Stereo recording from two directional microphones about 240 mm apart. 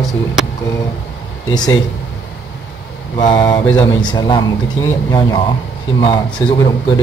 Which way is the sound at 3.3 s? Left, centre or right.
Centre.